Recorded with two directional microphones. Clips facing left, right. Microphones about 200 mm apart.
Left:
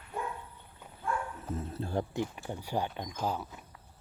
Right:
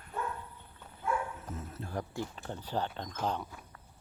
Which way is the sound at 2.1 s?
15° left (ahead or behind).